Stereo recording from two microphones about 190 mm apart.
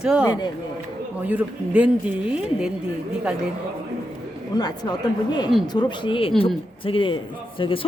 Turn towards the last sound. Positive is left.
turn(degrees=30)  # may be behind; listen again after turning